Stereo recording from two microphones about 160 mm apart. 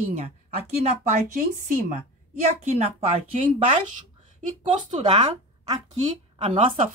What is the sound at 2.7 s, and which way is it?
Speech, 40° right (ahead or behind).